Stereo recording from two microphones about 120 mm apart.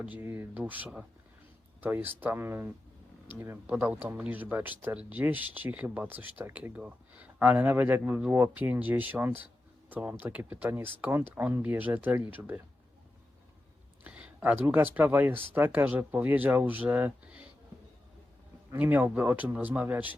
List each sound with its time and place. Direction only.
0.0 s speech: 15° right (ahead or behind)
14.0 s speech: 10° right (ahead or behind)
18.8 s speech: 15° right (ahead or behind)